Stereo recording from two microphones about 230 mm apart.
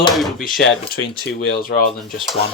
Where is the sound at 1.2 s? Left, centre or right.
Left.